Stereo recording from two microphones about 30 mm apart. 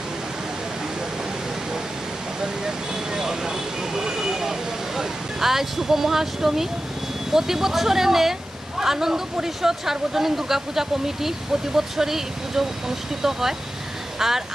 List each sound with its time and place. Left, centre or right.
2.4 s speech: right